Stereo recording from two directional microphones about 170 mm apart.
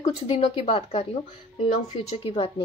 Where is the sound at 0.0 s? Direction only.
35° left (ahead or behind).